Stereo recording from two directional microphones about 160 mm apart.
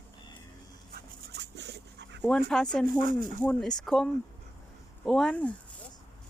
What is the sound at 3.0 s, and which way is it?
Speech, 55° right (ahead or behind).